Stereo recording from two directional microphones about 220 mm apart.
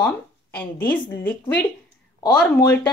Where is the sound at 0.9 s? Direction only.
10° left (ahead or behind).